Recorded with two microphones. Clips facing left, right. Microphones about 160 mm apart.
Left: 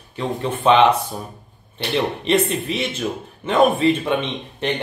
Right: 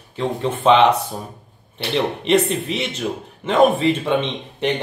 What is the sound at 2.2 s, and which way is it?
A man's voice, 20° right (ahead or behind).